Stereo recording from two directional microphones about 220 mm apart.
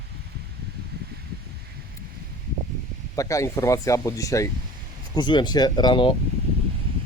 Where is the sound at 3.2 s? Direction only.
15° left (ahead or behind).